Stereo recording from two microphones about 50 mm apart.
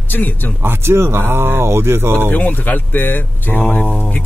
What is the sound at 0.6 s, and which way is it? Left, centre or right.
Speech, right.